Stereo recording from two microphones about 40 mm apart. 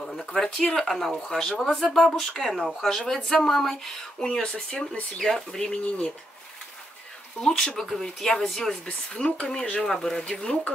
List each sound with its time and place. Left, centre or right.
0.3 s speech: centre
5.2 s speech: centre
5.6 s speech: left
7.4 s speech: centre